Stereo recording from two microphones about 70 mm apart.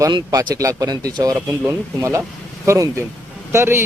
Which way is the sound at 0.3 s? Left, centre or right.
Right.